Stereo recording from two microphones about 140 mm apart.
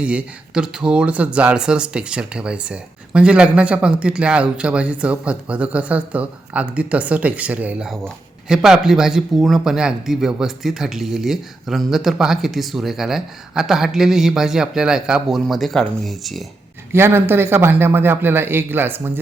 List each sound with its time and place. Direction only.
0.0 s speech: 10° right (ahead or behind)
16.9 s speech: 15° right (ahead or behind)